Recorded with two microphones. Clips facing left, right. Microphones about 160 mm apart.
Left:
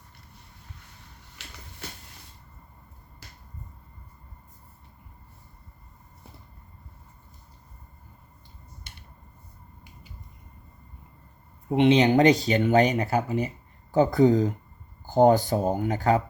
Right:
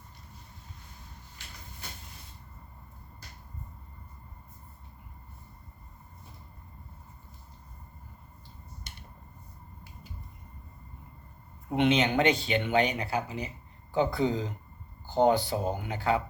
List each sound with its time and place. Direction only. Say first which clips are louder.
11.7 s speech: left 6 dB; 30° left (ahead or behind)